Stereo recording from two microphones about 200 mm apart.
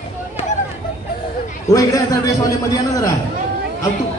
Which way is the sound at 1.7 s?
15° left (ahead or behind).